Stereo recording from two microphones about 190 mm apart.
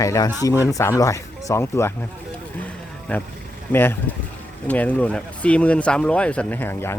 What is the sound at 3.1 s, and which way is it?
Speech, 10° left (ahead or behind).